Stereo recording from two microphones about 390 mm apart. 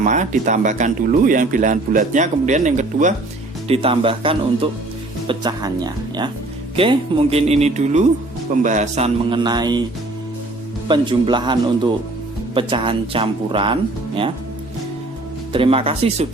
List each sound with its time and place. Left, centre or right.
0.0 s speech: centre
10.8 s speech: centre
15.5 s speech: centre